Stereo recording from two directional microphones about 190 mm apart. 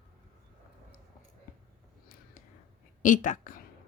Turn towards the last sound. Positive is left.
turn(degrees=45)  # may be behind; listen again after turning